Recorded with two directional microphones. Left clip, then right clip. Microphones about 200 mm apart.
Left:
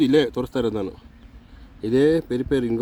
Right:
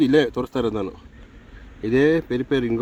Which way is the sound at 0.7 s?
10° left (ahead or behind).